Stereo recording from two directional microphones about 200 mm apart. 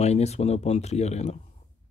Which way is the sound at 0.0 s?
35° left (ahead or behind).